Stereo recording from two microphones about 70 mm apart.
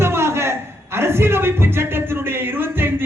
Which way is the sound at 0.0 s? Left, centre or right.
Right.